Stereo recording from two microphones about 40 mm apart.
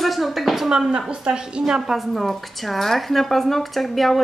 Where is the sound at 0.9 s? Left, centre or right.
Right.